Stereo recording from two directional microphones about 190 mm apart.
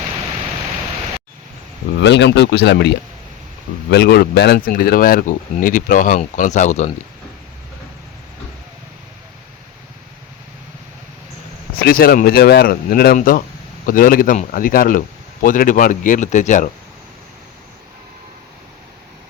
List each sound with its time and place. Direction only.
2.0 s speech: 70° left (ahead or behind); by 6.9 s 35° left (ahead or behind)
11.8 s speech: 50° left (ahead or behind)